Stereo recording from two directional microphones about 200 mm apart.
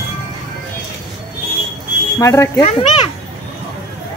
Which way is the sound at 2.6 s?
30° left (ahead or behind).